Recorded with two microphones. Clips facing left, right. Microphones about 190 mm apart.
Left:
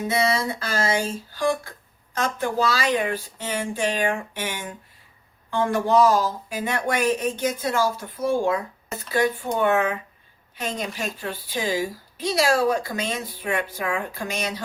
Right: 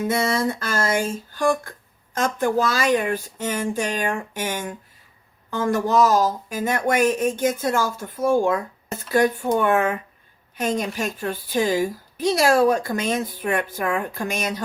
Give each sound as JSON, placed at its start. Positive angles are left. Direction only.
{"t": 0.1, "sound": "speech", "side_deg": -50}